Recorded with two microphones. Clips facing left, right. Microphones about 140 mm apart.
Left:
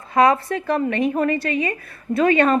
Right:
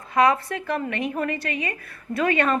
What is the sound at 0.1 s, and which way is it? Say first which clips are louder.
Speech: left 3 dB; 35° left (ahead or behind).